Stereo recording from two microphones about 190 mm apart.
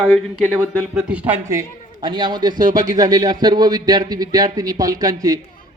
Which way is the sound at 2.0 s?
25° right (ahead or behind).